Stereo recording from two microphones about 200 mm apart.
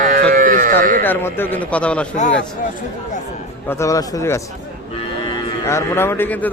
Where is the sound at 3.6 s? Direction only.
15° left (ahead or behind).